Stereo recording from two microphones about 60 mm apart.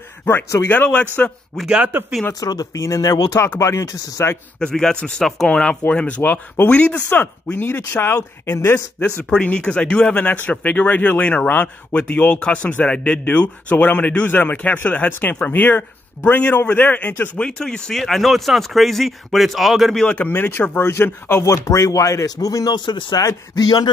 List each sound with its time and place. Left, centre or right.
0.2 s speech: left
1.2 s speech: left
1.9 s speech: right
2.4 s speech: left
3.5 s speech: left
4.6 s speech: centre
7.1 s speech: left
9.3 s speech: centre
17.4 s speech: centre
20.2 s speech: left
21.5 s speech: left